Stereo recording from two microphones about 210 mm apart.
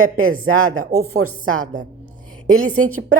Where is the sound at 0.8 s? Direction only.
90° right.